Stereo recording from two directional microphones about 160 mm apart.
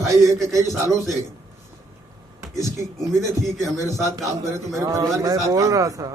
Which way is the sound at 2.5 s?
20° right (ahead or behind).